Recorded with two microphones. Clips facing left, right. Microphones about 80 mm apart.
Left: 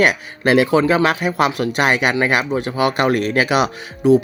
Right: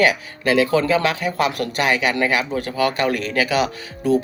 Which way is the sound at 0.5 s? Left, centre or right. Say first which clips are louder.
Left 3 dB; left.